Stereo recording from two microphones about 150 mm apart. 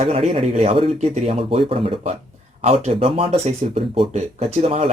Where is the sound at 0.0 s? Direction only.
45° right (ahead or behind).